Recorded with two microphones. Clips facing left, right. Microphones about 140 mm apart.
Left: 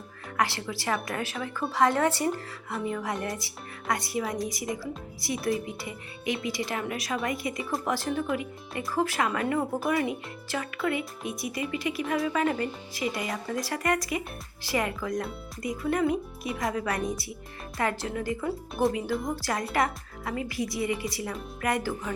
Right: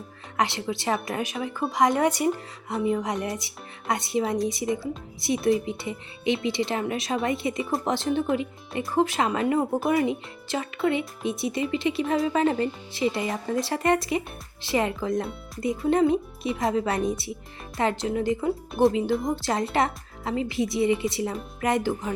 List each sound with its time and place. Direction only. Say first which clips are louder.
0.3 s speech: right 3 dB; 20° right (ahead or behind)